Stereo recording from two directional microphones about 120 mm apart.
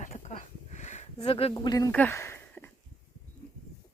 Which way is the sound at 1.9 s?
15° left (ahead or behind).